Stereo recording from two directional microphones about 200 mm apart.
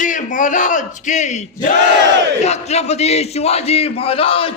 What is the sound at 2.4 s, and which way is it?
A man's voice, 35° left (ahead or behind).